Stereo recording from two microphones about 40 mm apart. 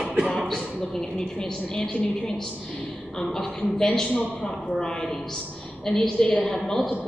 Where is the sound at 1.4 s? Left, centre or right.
Centre.